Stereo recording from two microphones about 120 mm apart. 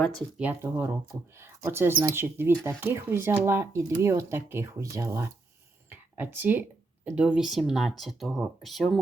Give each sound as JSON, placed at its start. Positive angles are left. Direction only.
{"t": 0.6, "sound": "speech", "side_deg": -20}